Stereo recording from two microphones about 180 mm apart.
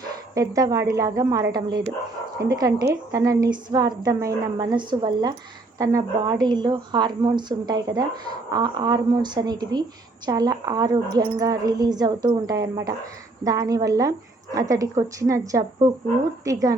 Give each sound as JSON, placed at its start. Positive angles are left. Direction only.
{"t": 0.3, "sound": "a woman's voice", "side_deg": -20}